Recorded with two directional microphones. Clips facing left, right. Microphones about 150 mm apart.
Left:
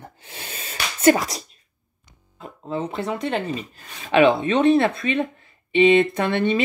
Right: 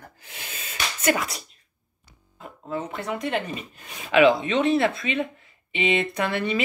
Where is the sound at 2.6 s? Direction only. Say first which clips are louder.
Left 4 dB; 25° left (ahead or behind).